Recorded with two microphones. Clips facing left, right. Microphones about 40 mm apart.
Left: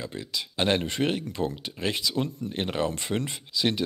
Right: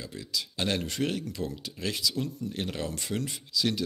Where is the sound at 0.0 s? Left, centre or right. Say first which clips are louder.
Left 2 dB; left.